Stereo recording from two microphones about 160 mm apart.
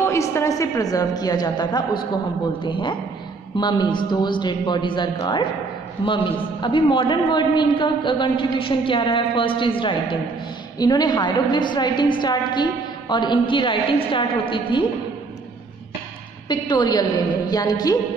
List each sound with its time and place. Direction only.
0.0 s a woman's voice: 15° left (ahead or behind)
6.6 s a man's voice: 30° left (ahead or behind)
16.4 s a woman's voice: 25° left (ahead or behind)